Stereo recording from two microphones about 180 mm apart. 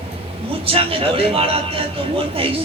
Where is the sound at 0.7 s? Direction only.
30° right (ahead or behind).